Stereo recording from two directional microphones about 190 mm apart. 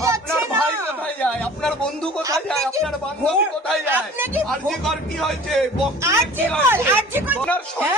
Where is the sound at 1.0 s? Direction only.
5° left (ahead or behind).